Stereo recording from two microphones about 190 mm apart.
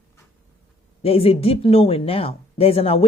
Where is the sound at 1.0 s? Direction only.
30° left (ahead or behind).